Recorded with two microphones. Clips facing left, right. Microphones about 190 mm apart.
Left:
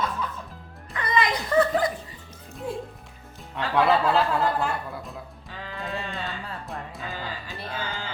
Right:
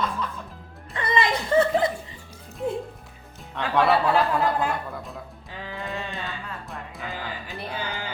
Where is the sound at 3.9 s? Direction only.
15° right (ahead or behind).